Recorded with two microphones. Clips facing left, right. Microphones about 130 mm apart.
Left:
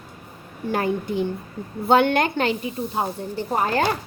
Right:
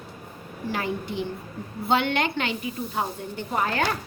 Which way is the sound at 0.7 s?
50° left (ahead or behind).